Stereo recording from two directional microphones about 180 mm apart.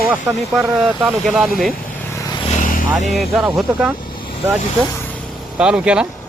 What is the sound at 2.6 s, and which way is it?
Vehicle, 50° left (ahead or behind).